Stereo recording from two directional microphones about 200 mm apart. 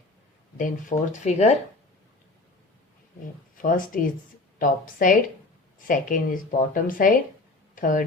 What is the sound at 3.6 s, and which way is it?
Speech, 45° left (ahead or behind).